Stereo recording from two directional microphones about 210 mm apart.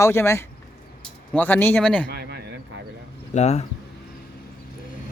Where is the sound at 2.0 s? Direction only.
50° right (ahead or behind).